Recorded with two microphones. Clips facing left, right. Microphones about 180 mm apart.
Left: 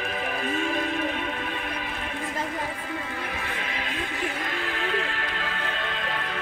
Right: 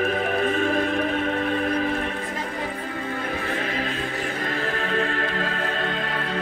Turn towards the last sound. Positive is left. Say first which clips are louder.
# right 6 dB
turn(degrees=-40)  # may be behind; listen again after turning